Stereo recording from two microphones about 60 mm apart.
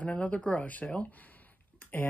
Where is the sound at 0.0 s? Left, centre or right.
Left.